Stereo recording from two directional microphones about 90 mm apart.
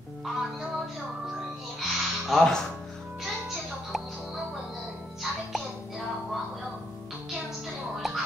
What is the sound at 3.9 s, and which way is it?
Music, 5° right (ahead or behind).